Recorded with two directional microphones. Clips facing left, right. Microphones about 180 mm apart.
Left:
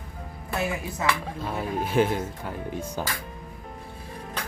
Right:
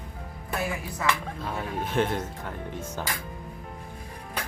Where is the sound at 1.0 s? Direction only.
25° left (ahead or behind).